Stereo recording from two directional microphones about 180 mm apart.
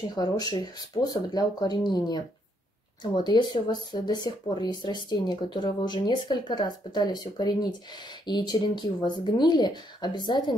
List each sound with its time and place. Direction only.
0.1 s speech: 20° left (ahead or behind)